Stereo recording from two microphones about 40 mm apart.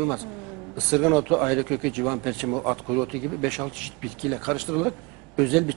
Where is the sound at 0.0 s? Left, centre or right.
Centre.